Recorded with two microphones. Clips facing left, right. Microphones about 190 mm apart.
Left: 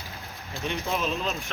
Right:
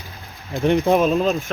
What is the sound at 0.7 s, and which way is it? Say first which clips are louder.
Speech: right 13 dB; 55° right (ahead or behind).